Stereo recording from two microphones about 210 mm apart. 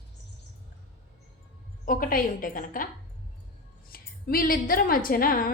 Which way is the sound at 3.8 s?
45° left (ahead or behind).